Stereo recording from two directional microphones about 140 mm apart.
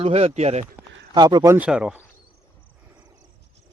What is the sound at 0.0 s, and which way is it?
Speech, 50° right (ahead or behind).